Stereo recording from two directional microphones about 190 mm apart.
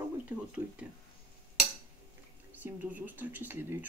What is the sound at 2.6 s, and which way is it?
Speech, 10° right (ahead or behind).